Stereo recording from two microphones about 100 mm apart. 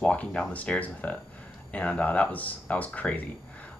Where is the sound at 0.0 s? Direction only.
10° left (ahead or behind).